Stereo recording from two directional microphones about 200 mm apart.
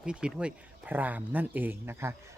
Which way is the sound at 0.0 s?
5° right (ahead or behind).